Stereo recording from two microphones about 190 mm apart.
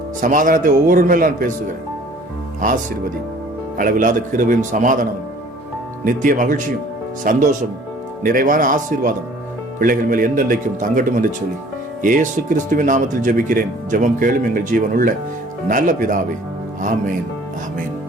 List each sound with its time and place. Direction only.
0.2 s speech: 45° right (ahead or behind)
3.8 s speech: 45° right (ahead or behind)
6.1 s speech: 45° right (ahead or behind)